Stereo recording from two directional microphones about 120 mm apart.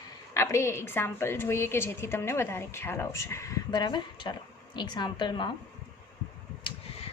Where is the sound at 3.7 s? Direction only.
35° left (ahead or behind).